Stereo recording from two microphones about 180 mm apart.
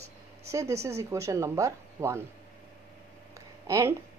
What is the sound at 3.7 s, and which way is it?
Speech, 15° right (ahead or behind).